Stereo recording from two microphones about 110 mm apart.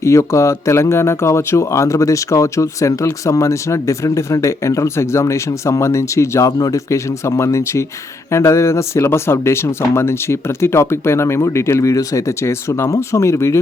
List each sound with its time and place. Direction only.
0.0 s speech: 25° left (ahead or behind)